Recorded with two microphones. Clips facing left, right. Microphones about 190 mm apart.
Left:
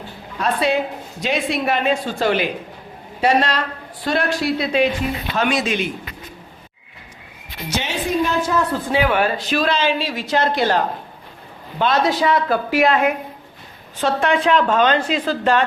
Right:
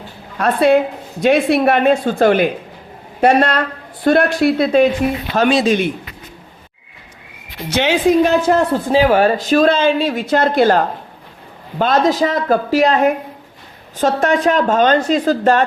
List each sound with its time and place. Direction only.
0.3 s a woman's voice: 55° right (ahead or behind)
5.5 s speech: 30° right (ahead or behind)
7.8 s a woman's voice: 75° right (ahead or behind); by 8.8 s 60° right (ahead or behind)
8.9 s speech: 35° right (ahead or behind)